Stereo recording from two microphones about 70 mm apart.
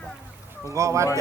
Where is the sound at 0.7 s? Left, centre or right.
Right.